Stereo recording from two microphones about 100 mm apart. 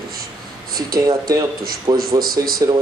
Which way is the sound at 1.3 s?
40° right (ahead or behind).